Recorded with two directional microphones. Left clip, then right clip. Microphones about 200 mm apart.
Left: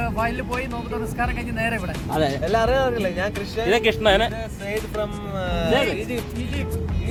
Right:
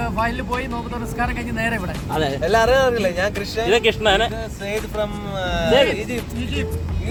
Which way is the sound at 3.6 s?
30° left (ahead or behind).